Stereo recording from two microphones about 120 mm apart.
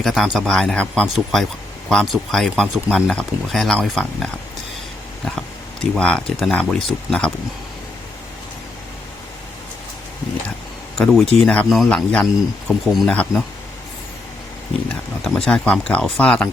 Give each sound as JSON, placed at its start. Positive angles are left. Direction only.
{"t": 0.0, "sound": "speech", "side_deg": 0}
{"t": 6.0, "sound": "speech", "side_deg": 10}
{"t": 10.9, "sound": "speech", "side_deg": 0}
{"t": 15.3, "sound": "speech", "side_deg": 5}